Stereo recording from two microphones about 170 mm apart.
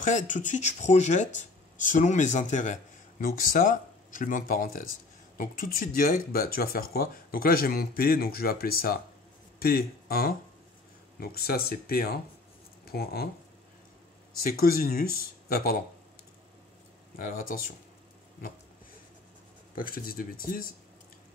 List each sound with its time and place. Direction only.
0.0 s speech: 45° left (ahead or behind); by 13.3 s 65° left (ahead or behind)
14.4 s speech: 60° left (ahead or behind)
17.2 s speech: 55° left (ahead or behind)
19.7 s speech: 55° left (ahead or behind)